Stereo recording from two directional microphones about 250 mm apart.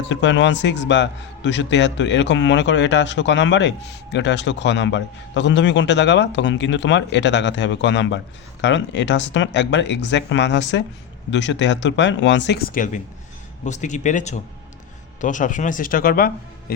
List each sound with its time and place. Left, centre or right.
0.0 s a man's voice: left